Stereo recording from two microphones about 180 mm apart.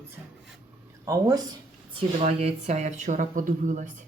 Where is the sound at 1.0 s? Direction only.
20° right (ahead or behind); by 4.0 s 45° right (ahead or behind).